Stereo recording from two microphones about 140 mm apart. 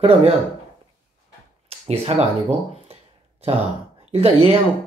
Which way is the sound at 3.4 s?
45° right (ahead or behind).